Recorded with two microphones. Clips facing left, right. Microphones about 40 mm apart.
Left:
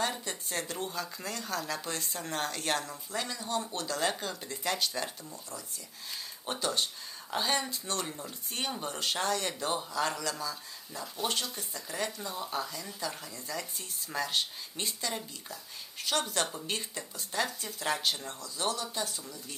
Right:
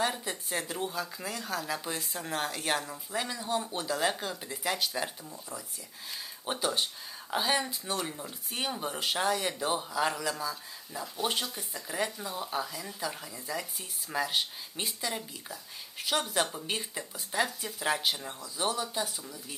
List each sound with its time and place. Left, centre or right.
0.0 s speech: centre